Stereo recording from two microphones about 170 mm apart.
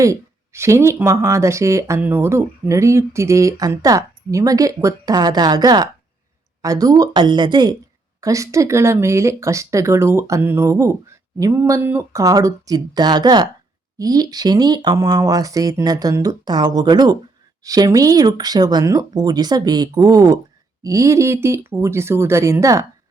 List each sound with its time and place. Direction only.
0.0 s speech: 15° right (ahead or behind)